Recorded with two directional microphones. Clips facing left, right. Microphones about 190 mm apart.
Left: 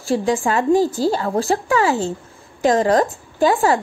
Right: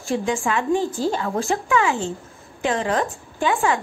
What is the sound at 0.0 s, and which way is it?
A woman's voice, 35° left (ahead or behind).